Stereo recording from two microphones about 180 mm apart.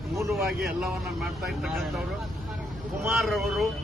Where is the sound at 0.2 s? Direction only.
15° right (ahead or behind).